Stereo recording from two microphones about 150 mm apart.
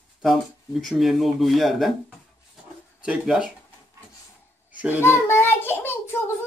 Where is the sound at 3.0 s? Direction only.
5° right (ahead or behind).